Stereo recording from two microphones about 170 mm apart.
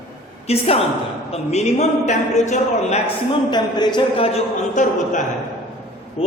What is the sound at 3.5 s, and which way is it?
A man's voice, 25° left (ahead or behind).